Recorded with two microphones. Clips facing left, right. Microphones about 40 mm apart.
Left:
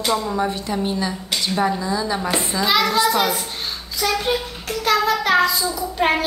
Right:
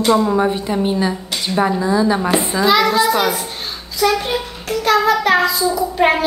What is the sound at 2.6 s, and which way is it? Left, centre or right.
A child's voice, centre.